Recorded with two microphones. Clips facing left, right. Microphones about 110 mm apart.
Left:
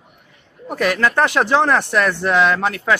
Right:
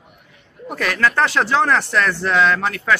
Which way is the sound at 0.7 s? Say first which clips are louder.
Left 2 dB; 15° left (ahead or behind).